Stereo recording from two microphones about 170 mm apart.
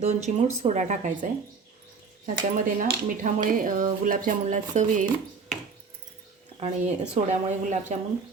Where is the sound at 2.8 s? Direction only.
55° right (ahead or behind).